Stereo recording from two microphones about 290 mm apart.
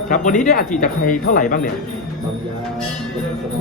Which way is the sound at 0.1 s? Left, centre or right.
Left.